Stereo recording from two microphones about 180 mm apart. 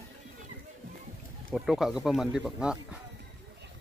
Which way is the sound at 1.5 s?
Centre (ahead or behind).